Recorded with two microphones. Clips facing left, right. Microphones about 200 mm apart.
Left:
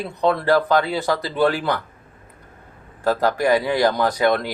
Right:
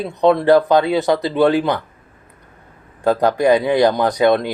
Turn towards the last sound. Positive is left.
turn(degrees=-20)  # may be behind; listen again after turning